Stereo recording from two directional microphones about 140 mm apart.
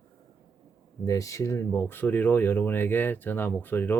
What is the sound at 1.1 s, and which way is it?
Speech, 25° left (ahead or behind).